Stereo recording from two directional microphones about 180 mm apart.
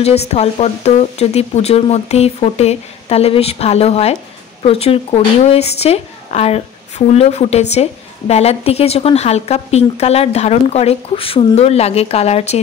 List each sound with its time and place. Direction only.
0.0 s a woman's voice: 35° left (ahead or behind)